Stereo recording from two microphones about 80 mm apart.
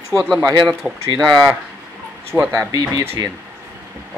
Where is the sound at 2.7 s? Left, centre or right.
Right.